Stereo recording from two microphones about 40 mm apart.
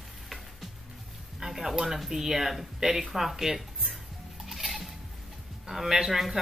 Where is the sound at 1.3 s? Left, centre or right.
Centre.